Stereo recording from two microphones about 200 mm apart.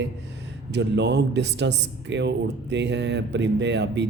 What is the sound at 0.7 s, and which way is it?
Speech, 60° right (ahead or behind).